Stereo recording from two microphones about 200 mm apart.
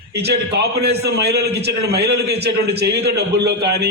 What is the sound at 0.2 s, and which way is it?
A man's voice, 55° right (ahead or behind).